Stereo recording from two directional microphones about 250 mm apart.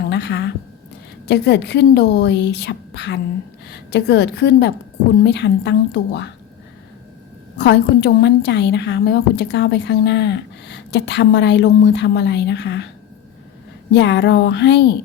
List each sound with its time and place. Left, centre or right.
0.1 s a sound: left
1.3 s a woman's voice: left
7.6 s a woman's voice: left
13.9 s a woman's voice: left